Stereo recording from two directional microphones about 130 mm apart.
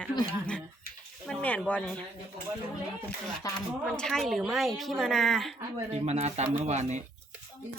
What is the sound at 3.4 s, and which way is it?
Speech, 30° left (ahead or behind).